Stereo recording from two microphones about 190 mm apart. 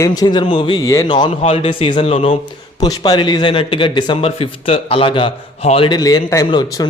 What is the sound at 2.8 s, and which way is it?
A man's voice, 20° left (ahead or behind).